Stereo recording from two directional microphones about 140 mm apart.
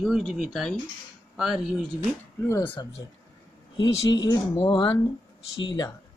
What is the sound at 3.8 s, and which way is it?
Speech, 30° left (ahead or behind).